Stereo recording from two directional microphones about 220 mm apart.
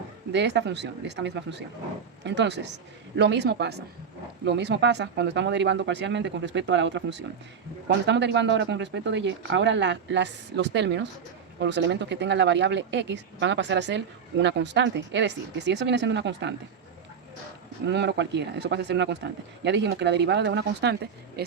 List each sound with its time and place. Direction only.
0.3 s speech: 50° right (ahead or behind)
17.8 s speech: 50° right (ahead or behind)